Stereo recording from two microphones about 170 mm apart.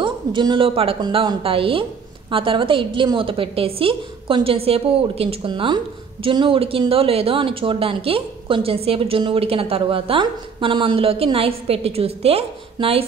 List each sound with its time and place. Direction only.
0.0 s speech: 25° right (ahead or behind)